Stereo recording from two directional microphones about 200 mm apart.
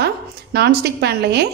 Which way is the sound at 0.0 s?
55° right (ahead or behind).